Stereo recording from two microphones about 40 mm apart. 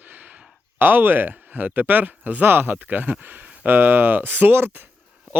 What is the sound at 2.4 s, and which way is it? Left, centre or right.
Speech, right.